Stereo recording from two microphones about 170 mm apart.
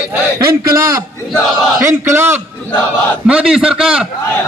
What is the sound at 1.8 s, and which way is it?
A man's voice, 15° right (ahead or behind).